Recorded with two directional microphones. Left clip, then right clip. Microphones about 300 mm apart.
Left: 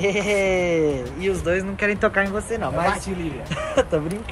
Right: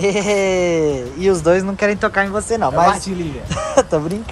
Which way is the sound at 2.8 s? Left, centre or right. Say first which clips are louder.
Right 9 dB; right.